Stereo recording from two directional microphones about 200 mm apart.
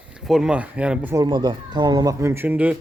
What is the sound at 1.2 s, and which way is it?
Speech, 25° right (ahead or behind).